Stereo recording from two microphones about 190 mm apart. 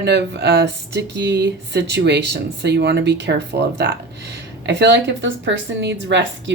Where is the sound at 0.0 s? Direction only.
60° right (ahead or behind).